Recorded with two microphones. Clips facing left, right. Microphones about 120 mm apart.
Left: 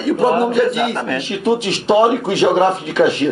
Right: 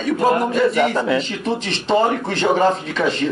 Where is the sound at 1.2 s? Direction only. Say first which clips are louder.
Left 5 dB; 10° left (ahead or behind).